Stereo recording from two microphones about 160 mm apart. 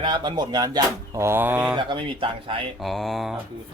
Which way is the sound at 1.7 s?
30° right (ahead or behind).